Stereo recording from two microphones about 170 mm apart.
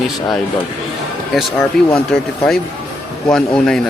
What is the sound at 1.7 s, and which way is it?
Speech, 5° left (ahead or behind).